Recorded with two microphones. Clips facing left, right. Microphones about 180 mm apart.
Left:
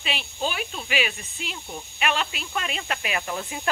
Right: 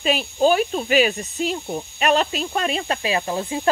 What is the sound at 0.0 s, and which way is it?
Speech, 40° right (ahead or behind).